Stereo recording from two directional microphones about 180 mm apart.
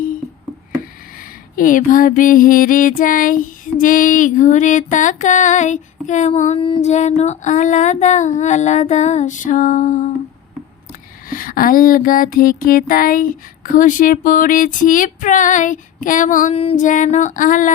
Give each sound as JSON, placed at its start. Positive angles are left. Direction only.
{"t": 1.5, "sound": "female singing", "side_deg": 50}
{"t": 6.6, "sound": "music", "side_deg": 30}
{"t": 6.9, "sound": "female singing", "side_deg": 40}
{"t": 11.3, "sound": "female singing", "side_deg": 50}